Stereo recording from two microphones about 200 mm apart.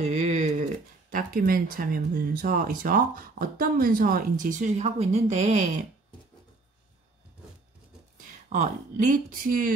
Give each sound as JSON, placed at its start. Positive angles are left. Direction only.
{"t": 0.0, "sound": "a sound", "side_deg": -35}
{"t": 1.1, "sound": "speech", "side_deg": -45}
{"t": 8.5, "sound": "speech", "side_deg": -40}